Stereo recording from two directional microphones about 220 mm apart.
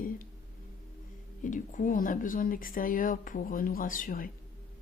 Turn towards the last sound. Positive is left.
turn(degrees=40)  # may be behind; listen again after turning